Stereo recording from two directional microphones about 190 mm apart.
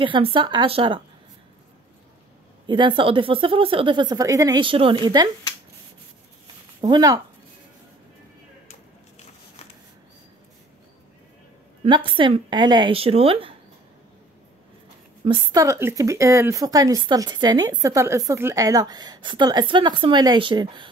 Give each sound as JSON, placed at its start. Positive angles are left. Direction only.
{"t": 0.0, "sound": "speech", "side_deg": -25}
{"t": 2.6, "sound": "speech", "side_deg": -25}
{"t": 6.8, "sound": "speech", "side_deg": -20}
{"t": 11.8, "sound": "speech", "side_deg": -25}
{"t": 15.2, "sound": "speech", "side_deg": -20}